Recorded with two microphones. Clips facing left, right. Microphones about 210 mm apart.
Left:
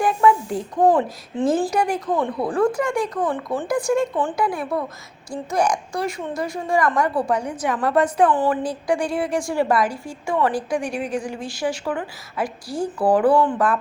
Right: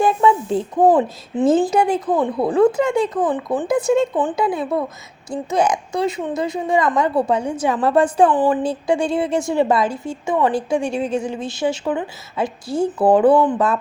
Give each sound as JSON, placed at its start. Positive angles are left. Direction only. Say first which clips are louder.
{"t": 0.0, "sound": "a woman's voice", "louder": "right 2 dB", "side_deg": -25}